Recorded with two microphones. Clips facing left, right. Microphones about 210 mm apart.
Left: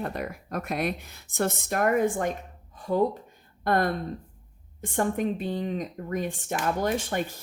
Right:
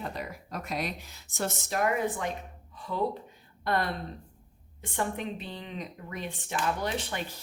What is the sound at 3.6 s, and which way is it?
Speech, 45° left (ahead or behind).